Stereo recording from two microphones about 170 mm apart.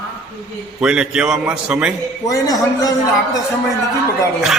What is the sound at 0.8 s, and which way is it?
A man's voice, 5° right (ahead or behind).